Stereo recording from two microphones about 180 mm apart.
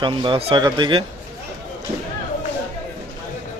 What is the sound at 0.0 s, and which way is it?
Speech, 25° right (ahead or behind).